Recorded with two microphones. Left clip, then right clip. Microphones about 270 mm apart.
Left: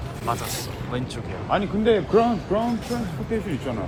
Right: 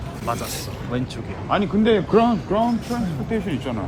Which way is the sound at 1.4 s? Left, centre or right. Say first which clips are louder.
Right 2 dB; right.